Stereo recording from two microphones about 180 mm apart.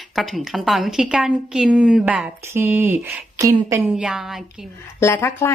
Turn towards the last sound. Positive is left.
turn(degrees=15)  # may be behind; listen again after turning